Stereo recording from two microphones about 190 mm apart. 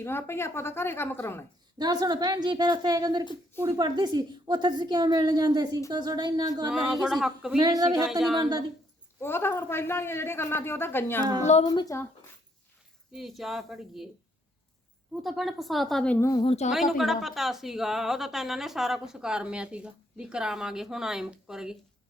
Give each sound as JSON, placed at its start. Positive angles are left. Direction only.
{"t": 0.0, "sound": "a man's voice", "side_deg": 10}
{"t": 1.8, "sound": "a woman's voice", "side_deg": -20}
{"t": 6.7, "sound": "speech", "side_deg": 0}
{"t": 7.6, "sound": "a woman's voice", "side_deg": -20}
{"t": 9.2, "sound": "a man's voice", "side_deg": 10}
{"t": 11.6, "sound": "speech", "side_deg": 20}
{"t": 13.1, "sound": "speech", "side_deg": 0}
{"t": 15.2, "sound": "speech", "side_deg": 0}
{"t": 16.4, "sound": "speech", "side_deg": 30}
{"t": 16.7, "sound": "speech", "side_deg": 0}